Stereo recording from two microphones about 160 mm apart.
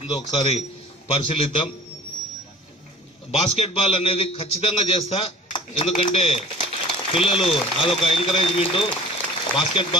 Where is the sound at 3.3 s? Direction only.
40° left (ahead or behind).